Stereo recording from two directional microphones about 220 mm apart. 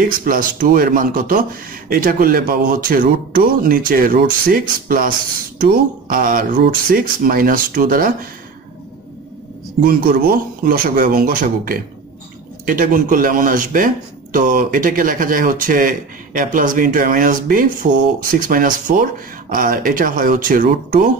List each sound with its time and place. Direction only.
0.0 s speech: 40° right (ahead or behind)
9.8 s speech: 40° right (ahead or behind)